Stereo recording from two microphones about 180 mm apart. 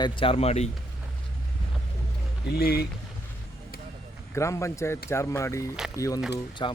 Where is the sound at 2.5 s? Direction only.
60° left (ahead or behind).